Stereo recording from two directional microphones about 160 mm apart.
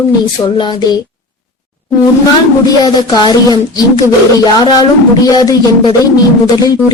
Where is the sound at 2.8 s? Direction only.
25° left (ahead or behind).